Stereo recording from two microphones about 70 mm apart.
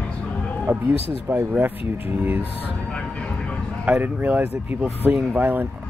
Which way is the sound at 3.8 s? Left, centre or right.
Right.